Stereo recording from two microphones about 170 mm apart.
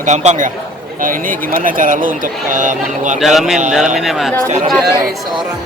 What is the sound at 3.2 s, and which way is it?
Speech, centre (ahead or behind).